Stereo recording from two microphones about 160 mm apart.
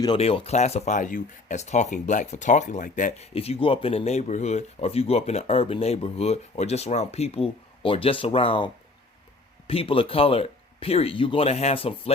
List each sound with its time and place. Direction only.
0.2 s speech: 40° left (ahead or behind)